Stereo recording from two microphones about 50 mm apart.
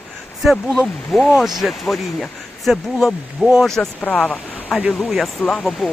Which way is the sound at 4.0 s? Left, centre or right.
Left.